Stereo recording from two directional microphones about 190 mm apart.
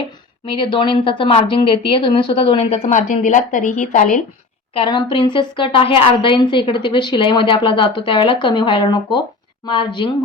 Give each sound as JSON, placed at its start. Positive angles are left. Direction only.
{"t": 0.4, "sound": "a woman's voice", "side_deg": 25}
{"t": 4.7, "sound": "a woman's voice", "side_deg": 25}